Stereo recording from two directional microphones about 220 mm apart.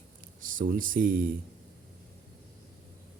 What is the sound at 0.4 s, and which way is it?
Speech, 40° right (ahead or behind).